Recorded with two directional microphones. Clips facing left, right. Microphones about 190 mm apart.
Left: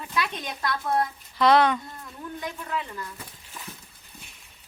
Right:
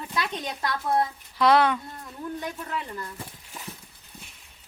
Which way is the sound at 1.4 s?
10° right (ahead or behind).